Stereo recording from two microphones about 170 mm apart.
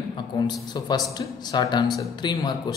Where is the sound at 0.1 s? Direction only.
25° left (ahead or behind).